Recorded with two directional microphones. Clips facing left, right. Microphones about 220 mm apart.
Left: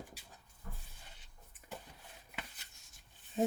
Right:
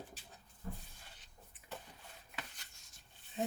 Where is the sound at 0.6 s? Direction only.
30° right (ahead or behind).